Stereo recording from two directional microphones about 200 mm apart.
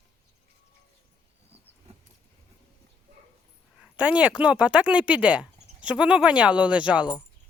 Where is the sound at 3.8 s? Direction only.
5° right (ahead or behind).